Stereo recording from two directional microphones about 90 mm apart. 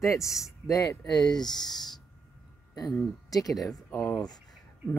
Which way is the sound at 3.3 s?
45° left (ahead or behind).